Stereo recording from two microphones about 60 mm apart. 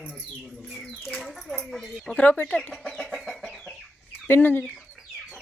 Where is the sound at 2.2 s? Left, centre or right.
Left.